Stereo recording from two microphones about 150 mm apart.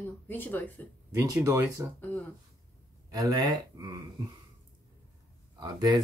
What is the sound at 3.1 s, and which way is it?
Speech, 25° right (ahead or behind).